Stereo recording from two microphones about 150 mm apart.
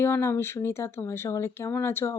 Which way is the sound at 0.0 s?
15° left (ahead or behind).